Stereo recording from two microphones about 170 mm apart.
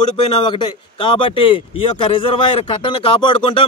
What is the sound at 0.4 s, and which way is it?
Speech, 30° left (ahead or behind).